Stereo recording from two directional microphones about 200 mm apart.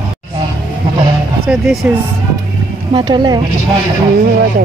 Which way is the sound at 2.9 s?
25° right (ahead or behind).